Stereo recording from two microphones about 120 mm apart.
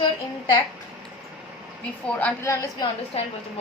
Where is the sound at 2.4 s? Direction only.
25° left (ahead or behind).